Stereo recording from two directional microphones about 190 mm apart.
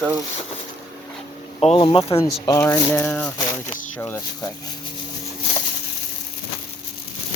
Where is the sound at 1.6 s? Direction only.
30° left (ahead or behind).